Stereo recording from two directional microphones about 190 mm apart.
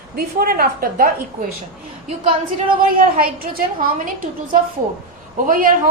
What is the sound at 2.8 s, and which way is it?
Speech, 50° right (ahead or behind).